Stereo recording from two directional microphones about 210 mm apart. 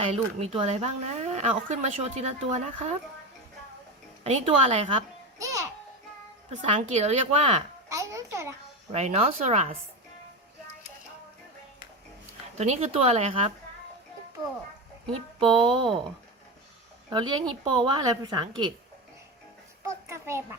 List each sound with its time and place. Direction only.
0.0 s speech: 30° right (ahead or behind)
4.2 s speech: 30° right (ahead or behind)
5.4 s music: 15° right (ahead or behind)
6.6 s speech: 30° right (ahead or behind)
7.9 s a child's voice: 15° right (ahead or behind)
8.9 s speech: 30° right (ahead or behind)
12.5 s a woman's voice: 30° right (ahead or behind)
15.7 s a woman's voice: 25° right (ahead or behind)
17.1 s a woman's voice: 20° right (ahead or behind)
19.8 s a child's voice: 10° right (ahead or behind)